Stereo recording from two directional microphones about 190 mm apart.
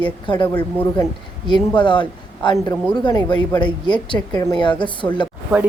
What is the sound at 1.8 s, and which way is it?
Speech, 25° left (ahead or behind).